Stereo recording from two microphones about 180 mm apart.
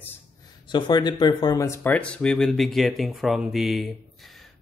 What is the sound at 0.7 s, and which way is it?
Speech, 25° left (ahead or behind).